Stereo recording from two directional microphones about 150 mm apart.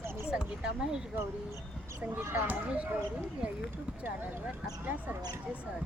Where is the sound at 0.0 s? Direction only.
15° right (ahead or behind).